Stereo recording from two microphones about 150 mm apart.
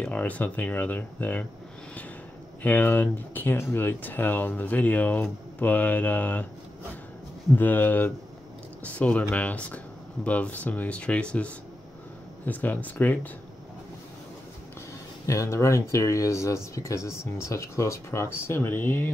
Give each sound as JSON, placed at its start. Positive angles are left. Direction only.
{"t": 0.0, "sound": "speech", "side_deg": 10}
{"t": 2.6, "sound": "speech", "side_deg": 10}
{"t": 7.5, "sound": "speech", "side_deg": 10}
{"t": 15.2, "sound": "speech", "side_deg": 20}